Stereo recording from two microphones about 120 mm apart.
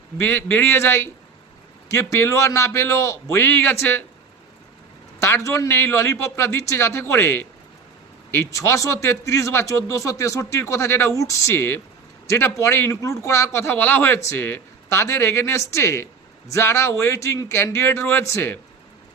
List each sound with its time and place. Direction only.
0.2 s a man's voice: 15° left (ahead or behind)
5.2 s a man's voice: 25° left (ahead or behind)